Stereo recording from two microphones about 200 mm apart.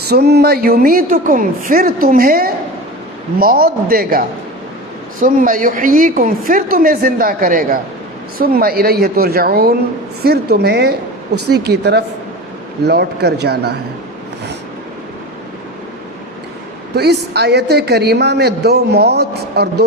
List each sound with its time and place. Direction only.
0.1 s a woman's voice: 55° right (ahead or behind)
16.9 s a woman's voice: 55° right (ahead or behind)